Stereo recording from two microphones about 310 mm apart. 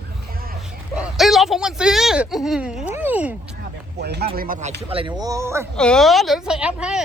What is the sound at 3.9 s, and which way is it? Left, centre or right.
Speech, right.